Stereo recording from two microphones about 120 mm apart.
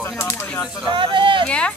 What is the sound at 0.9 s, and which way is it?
Speech, 45° right (ahead or behind).